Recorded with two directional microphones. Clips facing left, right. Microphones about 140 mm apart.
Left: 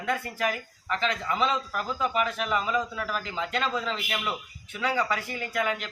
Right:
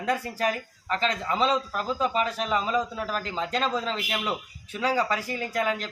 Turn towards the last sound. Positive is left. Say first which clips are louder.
# right 2 dB
turn(degrees=-35)  # may be behind; listen again after turning